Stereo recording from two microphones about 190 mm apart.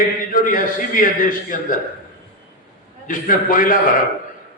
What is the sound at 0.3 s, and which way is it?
A man's voice, 45° left (ahead or behind).